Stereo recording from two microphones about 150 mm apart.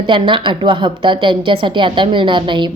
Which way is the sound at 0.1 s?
35° right (ahead or behind).